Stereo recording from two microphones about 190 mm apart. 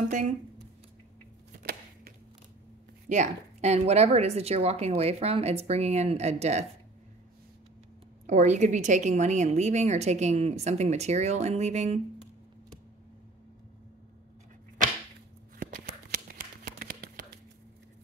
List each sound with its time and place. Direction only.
1.6 s chop: 50° right (ahead or behind)
3.1 s a woman's voice: 35° right (ahead or behind)
8.3 s a woman's voice: 40° right (ahead or behind)
15.7 s a sound: 50° right (ahead or behind)